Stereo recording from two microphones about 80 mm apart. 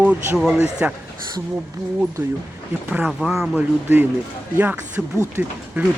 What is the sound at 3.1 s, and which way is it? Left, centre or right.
Speech, centre.